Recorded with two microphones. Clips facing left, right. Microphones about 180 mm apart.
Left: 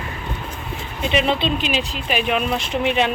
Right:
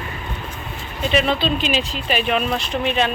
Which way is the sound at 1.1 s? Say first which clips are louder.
Even; 20° left (ahead or behind).